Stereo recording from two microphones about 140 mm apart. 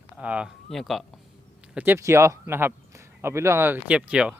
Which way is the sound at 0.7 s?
Centre (ahead or behind).